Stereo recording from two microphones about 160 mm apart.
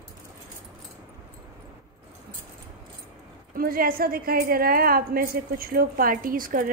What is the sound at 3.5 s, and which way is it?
A woman's voice, 65° right (ahead or behind).